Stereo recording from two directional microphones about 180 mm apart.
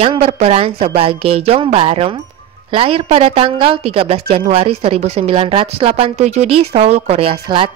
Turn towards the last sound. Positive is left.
turn(degrees=-30)  # may be behind; listen again after turning